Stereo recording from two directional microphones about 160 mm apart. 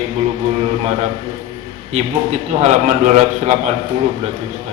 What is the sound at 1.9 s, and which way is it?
A man's voice, 45° right (ahead or behind).